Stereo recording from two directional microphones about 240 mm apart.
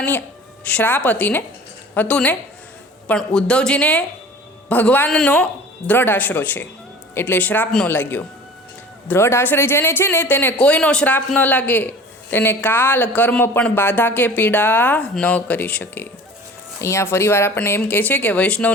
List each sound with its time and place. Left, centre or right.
0.6 s a man's voice: centre